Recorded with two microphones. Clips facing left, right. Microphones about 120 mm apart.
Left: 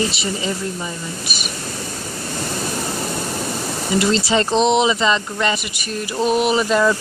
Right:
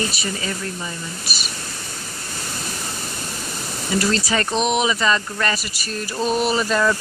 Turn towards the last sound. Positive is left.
turn(degrees=15)  # may be behind; listen again after turning